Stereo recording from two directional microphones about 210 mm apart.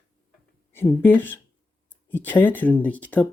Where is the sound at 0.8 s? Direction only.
10° left (ahead or behind).